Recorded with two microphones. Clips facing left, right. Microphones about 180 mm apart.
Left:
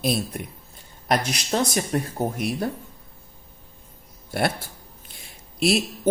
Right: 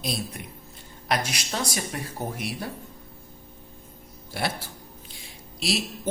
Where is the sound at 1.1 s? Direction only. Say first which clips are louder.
Left 5 dB; 40° left (ahead or behind).